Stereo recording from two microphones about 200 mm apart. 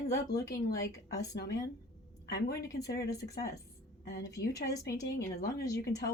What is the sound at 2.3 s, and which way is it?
Speech, 50° left (ahead or behind).